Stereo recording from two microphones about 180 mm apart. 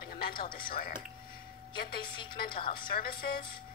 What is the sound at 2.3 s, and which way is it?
Speech, 55° left (ahead or behind).